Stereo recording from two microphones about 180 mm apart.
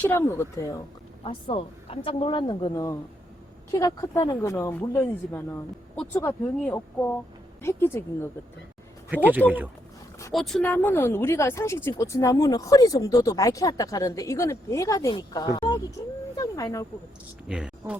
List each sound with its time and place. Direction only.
0.0 s speech: 10° left (ahead or behind)
1.2 s speech: 30° left (ahead or behind); by 8.3 s 15° left (ahead or behind)
9.0 s speech: 10° right (ahead or behind)
10.3 s speech: centre (ahead or behind); by 15.8 s 25° left (ahead or behind)
16.3 s a sound: 20° left (ahead or behind)
17.5 s speech: 5° right (ahead or behind)